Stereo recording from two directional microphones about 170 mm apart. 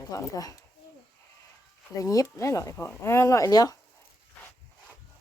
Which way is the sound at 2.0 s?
20° left (ahead or behind).